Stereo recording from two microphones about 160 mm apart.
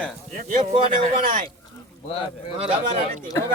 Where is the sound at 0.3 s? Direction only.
50° right (ahead or behind).